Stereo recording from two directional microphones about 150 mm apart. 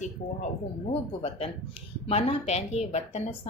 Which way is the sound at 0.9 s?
40° left (ahead or behind).